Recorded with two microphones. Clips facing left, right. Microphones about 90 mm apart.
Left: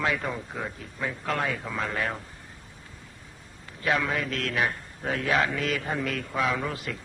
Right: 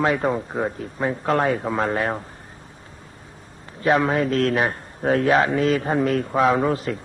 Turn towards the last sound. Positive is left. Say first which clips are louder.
# right 10 dB
turn(degrees=-35)  # may be behind; listen again after turning